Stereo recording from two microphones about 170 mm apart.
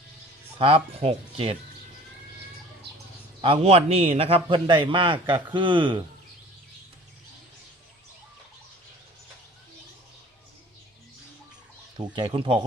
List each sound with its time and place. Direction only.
0.6 s speech: 35° right (ahead or behind)
3.4 s speech: 35° right (ahead or behind)
12.1 s speech: 30° right (ahead or behind)